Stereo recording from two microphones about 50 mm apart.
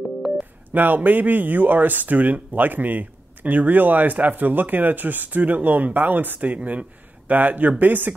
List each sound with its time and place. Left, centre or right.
0.2 s busy signal: centre
0.7 s speech: right